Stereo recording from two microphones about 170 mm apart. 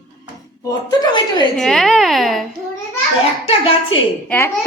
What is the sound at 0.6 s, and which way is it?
Speech, 20° left (ahead or behind).